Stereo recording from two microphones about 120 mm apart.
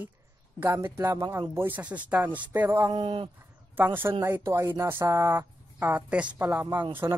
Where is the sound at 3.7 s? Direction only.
15° right (ahead or behind).